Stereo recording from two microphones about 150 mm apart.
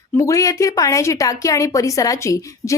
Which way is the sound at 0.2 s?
20° left (ahead or behind).